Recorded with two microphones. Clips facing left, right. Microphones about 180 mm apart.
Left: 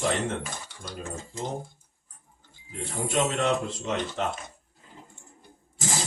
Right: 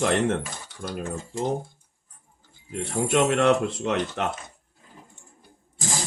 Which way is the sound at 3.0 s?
65° right (ahead or behind).